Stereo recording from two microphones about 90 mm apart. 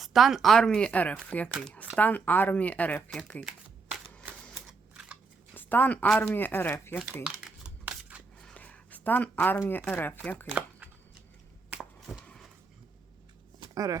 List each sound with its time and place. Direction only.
0.0 s speech: centre (ahead or behind); by 3.0 s 15° left (ahead or behind)
4.5 s typewriter: 10° right (ahead or behind)
5.5 s speech: 20° left (ahead or behind)
7.3 s crumpling: 10° right (ahead or behind)
8.4 s a sound: 10° left (ahead or behind)
9.6 s speech: 25° left (ahead or behind)
11.8 s a sound: centre (ahead or behind)